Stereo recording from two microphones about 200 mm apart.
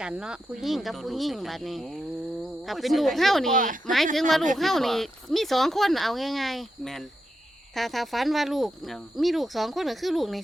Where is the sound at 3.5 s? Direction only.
40° right (ahead or behind).